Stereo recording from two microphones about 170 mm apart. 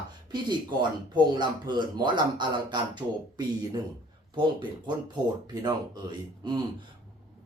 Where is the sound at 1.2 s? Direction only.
25° right (ahead or behind).